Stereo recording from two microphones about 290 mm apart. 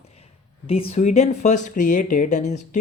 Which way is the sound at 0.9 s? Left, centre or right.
Left.